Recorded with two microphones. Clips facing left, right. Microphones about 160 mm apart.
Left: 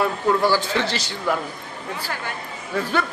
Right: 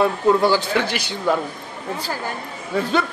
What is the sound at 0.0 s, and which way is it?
Speech, 15° right (ahead or behind).